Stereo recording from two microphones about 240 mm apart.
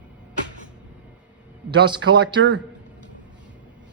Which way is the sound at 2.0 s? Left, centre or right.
Right.